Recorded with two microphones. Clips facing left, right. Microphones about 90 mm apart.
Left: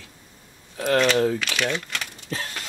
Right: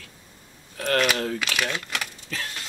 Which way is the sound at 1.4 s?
5° right (ahead or behind).